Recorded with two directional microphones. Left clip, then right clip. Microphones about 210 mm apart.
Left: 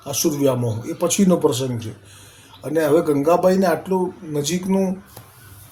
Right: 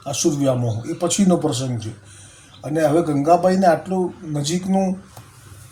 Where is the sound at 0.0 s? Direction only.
15° left (ahead or behind).